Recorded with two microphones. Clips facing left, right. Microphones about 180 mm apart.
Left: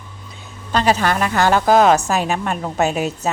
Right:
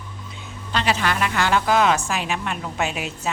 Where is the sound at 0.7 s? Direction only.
40° left (ahead or behind).